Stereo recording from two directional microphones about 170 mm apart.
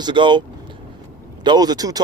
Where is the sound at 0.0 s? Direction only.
25° right (ahead or behind).